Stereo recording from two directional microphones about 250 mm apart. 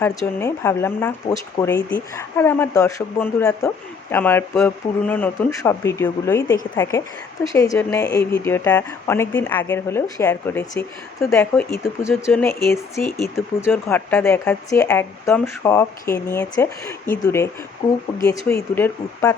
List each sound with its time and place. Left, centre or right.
0.0 s speech: centre
17.8 s speech: left
18.3 s speech: centre